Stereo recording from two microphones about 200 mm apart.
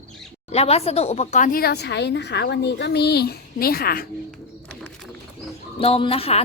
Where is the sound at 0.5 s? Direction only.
30° left (ahead or behind); by 4.0 s 50° left (ahead or behind).